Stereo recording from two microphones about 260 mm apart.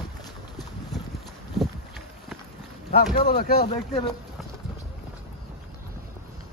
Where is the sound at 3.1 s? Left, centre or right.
Left.